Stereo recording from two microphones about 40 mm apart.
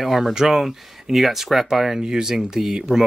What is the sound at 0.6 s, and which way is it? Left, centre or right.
Speech, centre.